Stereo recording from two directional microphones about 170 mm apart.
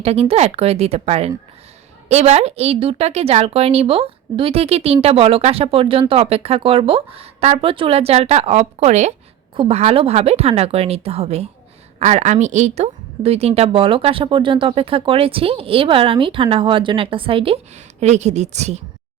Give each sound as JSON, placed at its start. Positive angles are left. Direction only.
{"t": 0.0, "sound": "speech", "side_deg": -35}